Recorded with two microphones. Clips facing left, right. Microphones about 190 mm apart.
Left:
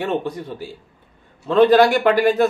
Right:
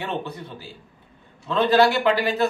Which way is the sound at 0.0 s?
50° left (ahead or behind).